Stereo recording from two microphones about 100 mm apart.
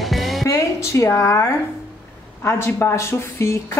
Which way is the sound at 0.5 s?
35° left (ahead or behind).